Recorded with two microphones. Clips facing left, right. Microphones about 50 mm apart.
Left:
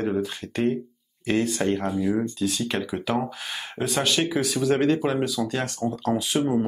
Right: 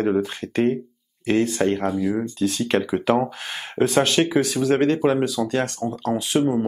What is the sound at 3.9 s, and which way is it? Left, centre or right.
Speech, right.